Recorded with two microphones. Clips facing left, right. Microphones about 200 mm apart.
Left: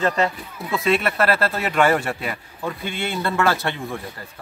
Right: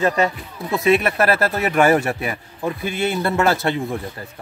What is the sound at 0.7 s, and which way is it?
Speech, 20° right (ahead or behind).